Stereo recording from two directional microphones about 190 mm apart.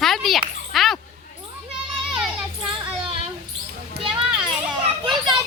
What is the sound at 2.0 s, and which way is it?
Children playing, 5° right (ahead or behind).